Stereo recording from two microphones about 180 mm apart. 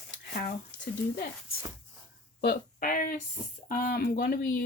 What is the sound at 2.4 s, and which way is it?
Speech, 55° left (ahead or behind).